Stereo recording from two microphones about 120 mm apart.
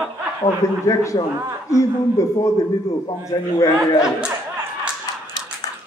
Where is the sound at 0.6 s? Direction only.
25° left (ahead or behind).